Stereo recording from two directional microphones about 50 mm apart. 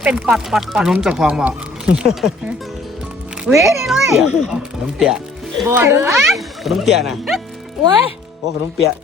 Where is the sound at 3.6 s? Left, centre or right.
Centre.